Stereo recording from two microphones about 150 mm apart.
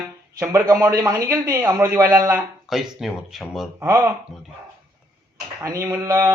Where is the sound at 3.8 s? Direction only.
20° right (ahead or behind).